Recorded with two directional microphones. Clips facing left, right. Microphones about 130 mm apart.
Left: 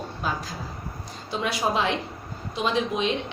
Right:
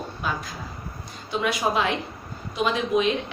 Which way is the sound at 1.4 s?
30° left (ahead or behind).